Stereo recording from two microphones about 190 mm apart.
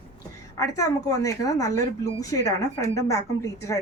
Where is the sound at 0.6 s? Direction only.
15° left (ahead or behind).